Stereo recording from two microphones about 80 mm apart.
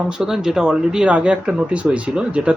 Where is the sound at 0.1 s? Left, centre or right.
Centre.